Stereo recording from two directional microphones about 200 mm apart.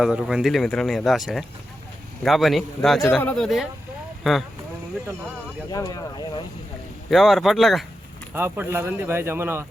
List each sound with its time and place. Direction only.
0.0 s speech: 5° right (ahead or behind)
5.7 s speech: 20° left (ahead or behind)
7.1 s speech: centre (ahead or behind)
8.3 s speech: 10° right (ahead or behind)